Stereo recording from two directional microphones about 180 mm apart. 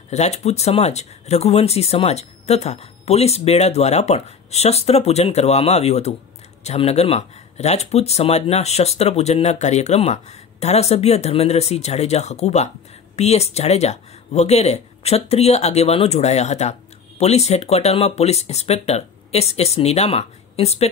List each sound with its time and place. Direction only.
0.1 s speech: 35° left (ahead or behind)